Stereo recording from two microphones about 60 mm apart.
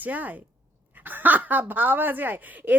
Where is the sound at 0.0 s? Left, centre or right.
Right.